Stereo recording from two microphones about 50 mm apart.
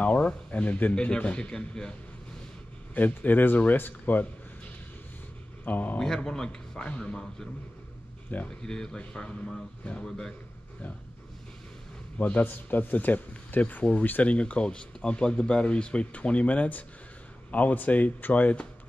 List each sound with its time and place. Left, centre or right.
0.0 s a sound: left
0.5 s speech: left
2.9 s speech: left
5.7 s speech: left
5.9 s speech: centre
8.3 s speech: left
8.6 s speech: centre
12.2 s speech: left